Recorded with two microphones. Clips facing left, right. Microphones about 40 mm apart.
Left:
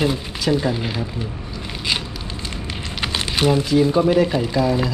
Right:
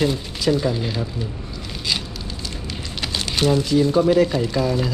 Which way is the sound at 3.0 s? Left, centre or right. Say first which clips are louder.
Left 2 dB; left.